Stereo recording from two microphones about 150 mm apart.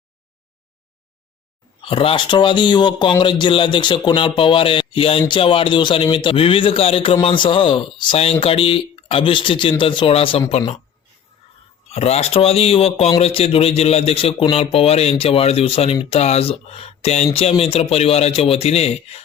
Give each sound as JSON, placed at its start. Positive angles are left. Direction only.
{"t": 1.8, "sound": "speech", "side_deg": 35}
{"t": 11.9, "sound": "speech", "side_deg": 45}